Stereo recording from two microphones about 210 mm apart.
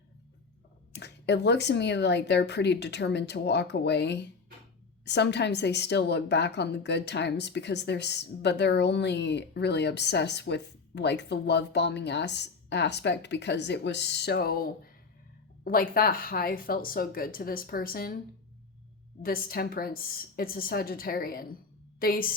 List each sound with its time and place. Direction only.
0.9 s a woman's voice: 55° left (ahead or behind)
19.2 s a woman's voice: 45° left (ahead or behind)